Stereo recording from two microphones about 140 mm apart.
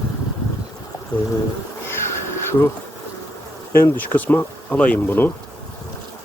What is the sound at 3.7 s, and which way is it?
Speech, 15° left (ahead or behind).